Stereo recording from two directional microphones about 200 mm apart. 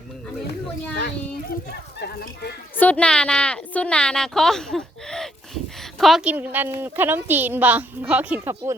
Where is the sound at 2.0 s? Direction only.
55° left (ahead or behind).